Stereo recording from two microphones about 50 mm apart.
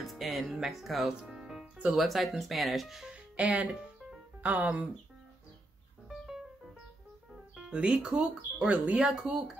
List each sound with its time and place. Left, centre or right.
0.0 s speech: centre
1.2 s music: centre
2.0 s speech: centre
3.1 s music: right
3.7 s music: centre
4.4 s speech: right
6.0 s music: centre
7.5 s speech: centre
8.6 s speech: right
9.0 s speech: centre